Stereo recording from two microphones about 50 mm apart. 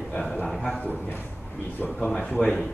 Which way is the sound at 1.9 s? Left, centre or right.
Centre.